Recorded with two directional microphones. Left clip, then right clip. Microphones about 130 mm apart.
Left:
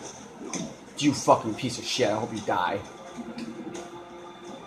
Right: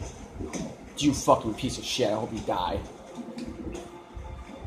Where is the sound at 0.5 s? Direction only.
15° right (ahead or behind).